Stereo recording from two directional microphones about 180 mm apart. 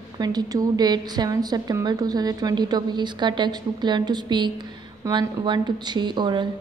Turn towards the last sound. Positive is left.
turn(degrees=-25)  # may be behind; listen again after turning